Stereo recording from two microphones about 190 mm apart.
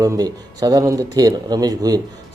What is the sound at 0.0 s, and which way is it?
Speech, 20° right (ahead or behind).